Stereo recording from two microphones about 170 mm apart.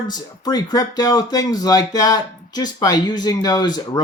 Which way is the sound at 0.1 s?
25° left (ahead or behind).